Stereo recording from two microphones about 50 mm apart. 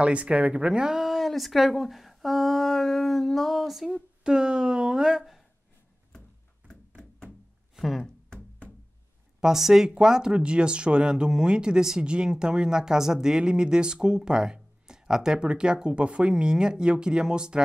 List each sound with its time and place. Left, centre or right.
0.0 s speech: right; by 3.9 s centre
4.2 s speech: centre
7.7 s a sound: centre
9.4 s speech: centre